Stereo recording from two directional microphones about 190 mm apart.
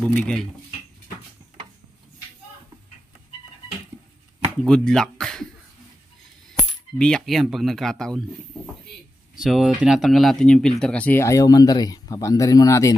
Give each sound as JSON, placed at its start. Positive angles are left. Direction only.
{"t": 0.2, "sound": "speech", "side_deg": 5}
{"t": 4.6, "sound": "speech", "side_deg": 5}
{"t": 7.0, "sound": "speech", "side_deg": 5}
{"t": 9.4, "sound": "speech", "side_deg": 0}